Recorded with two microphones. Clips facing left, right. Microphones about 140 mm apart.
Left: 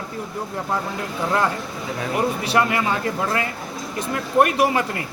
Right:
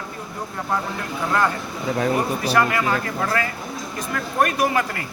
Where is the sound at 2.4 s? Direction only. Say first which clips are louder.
Even; 25° left (ahead or behind).